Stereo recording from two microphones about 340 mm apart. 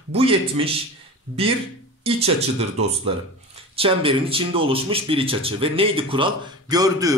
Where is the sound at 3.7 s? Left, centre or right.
Centre.